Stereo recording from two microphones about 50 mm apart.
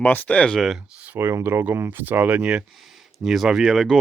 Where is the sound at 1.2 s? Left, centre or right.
Right.